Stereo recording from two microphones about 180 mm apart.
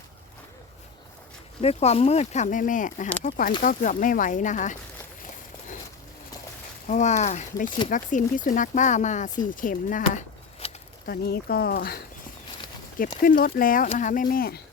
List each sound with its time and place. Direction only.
1.6 s speech: 35° left (ahead or behind)
6.8 s speech: 40° left (ahead or behind)
10.6 s a sound: 35° left (ahead or behind)
11.0 s speech: 55° left (ahead or behind)
13.2 s speech: 55° left (ahead or behind)